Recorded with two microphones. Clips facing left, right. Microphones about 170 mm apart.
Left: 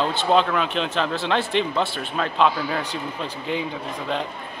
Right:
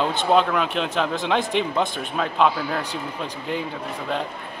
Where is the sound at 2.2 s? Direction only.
Centre (ahead or behind).